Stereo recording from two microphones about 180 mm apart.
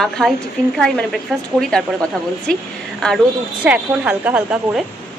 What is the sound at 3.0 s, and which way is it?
Speech, 5° left (ahead or behind).